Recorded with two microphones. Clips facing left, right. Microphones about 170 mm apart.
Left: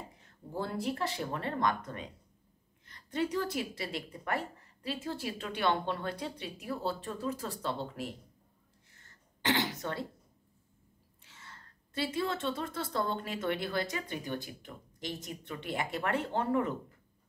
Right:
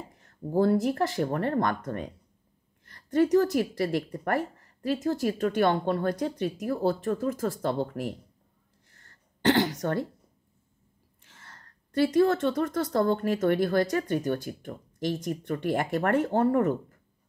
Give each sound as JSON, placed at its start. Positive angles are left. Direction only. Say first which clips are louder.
{"t": 0.5, "sound": "a woman's voice", "louder": "right 11 dB", "side_deg": -45}
{"t": 8.8, "sound": "a sound", "louder": "right 3 dB", "side_deg": -50}
{"t": 11.2, "sound": "a woman's voice", "louder": "right 1 dB", "side_deg": -50}